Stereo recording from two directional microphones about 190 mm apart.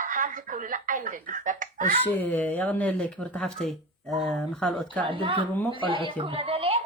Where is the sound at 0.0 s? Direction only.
45° right (ahead or behind).